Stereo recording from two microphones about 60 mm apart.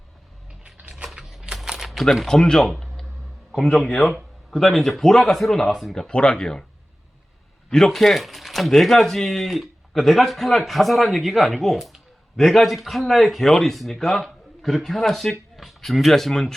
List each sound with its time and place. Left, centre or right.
0.6 s typing: right
1.0 s typing: centre
1.9 s speech: centre
2.6 s a sound: centre
3.5 s speech: centre
7.7 s speech: centre